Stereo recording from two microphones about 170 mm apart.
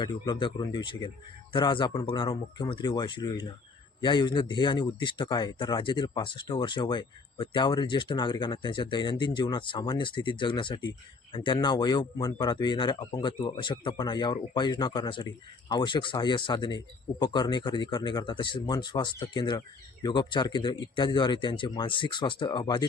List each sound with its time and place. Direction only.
0.0 s speech: 25° left (ahead or behind)